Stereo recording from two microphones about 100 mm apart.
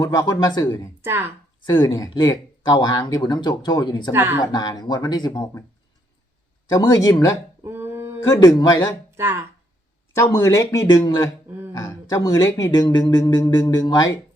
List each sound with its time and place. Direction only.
0.0 s speech: 35° left (ahead or behind)
4.1 s speech: 20° right (ahead or behind)
4.5 s speech: 45° left (ahead or behind)
6.7 s speech: 40° left (ahead or behind)
7.6 s a sound: 25° right (ahead or behind)
8.3 s speech: 40° left (ahead or behind)
9.1 s speech: 25° right (ahead or behind)
10.2 s speech: 30° left (ahead or behind)